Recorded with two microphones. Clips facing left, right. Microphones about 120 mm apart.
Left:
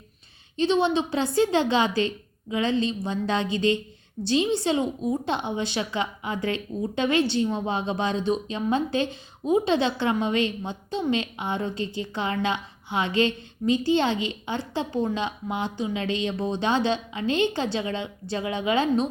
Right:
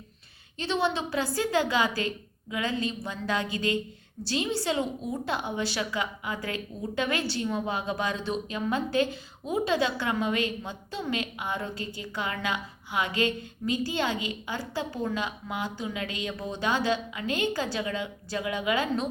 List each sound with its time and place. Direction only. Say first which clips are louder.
0.5 s a woman's voice: left 6 dB; 20° left (ahead or behind)